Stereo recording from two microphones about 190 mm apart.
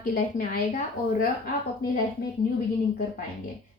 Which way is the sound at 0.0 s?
50° left (ahead or behind).